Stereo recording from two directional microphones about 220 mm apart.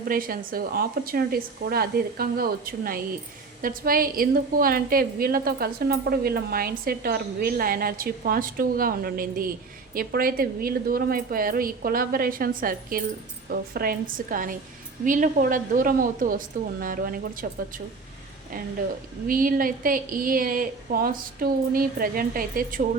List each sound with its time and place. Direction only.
0.1 s a woman's voice: 40° right (ahead or behind)
19.3 s a woman's voice: 40° right (ahead or behind)